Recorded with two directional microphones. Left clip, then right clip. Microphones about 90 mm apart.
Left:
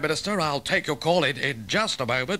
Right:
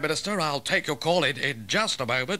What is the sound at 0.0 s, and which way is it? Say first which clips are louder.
A man's voice: left 1 dB; 35° right (ahead or behind).